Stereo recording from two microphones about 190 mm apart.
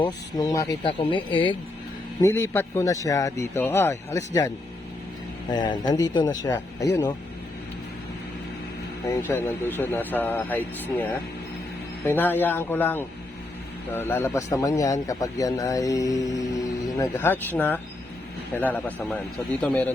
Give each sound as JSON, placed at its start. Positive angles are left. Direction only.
{"t": 0.0, "sound": "speech", "side_deg": 20}
{"t": 2.2, "sound": "speech", "side_deg": 15}
{"t": 5.5, "sound": "speech", "side_deg": 20}
{"t": 9.1, "sound": "speech", "side_deg": 10}